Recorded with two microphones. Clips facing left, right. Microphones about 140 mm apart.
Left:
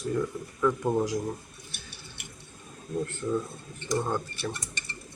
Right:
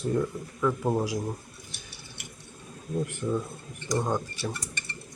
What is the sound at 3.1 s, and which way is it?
Speech, 15° right (ahead or behind).